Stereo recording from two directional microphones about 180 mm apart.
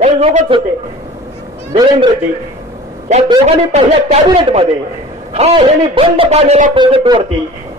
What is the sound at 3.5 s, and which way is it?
A man's voice, 35° right (ahead or behind).